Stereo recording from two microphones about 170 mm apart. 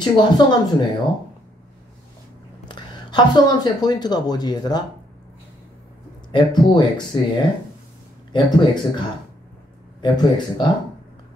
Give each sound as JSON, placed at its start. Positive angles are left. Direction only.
{"t": 0.0, "sound": "speech", "side_deg": 25}
{"t": 2.7, "sound": "speech", "side_deg": 25}
{"t": 6.3, "sound": "speech", "side_deg": 25}
{"t": 10.0, "sound": "speech", "side_deg": 25}